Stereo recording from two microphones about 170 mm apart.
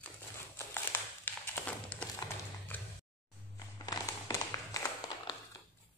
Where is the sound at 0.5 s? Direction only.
15° left (ahead or behind).